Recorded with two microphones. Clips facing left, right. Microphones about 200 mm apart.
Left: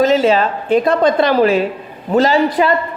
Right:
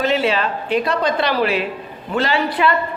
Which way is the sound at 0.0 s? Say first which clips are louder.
Left 6 dB; 40° left (ahead or behind).